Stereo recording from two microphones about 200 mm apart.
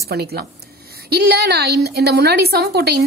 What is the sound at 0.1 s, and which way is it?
A woman's voice, 50° right (ahead or behind).